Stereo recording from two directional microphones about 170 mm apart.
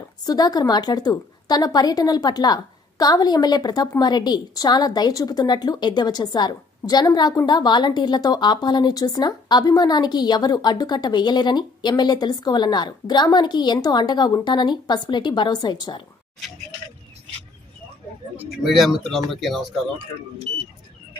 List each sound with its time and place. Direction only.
0.2 s a woman's voice: 20° left (ahead or behind)
18.6 s speech: centre (ahead or behind)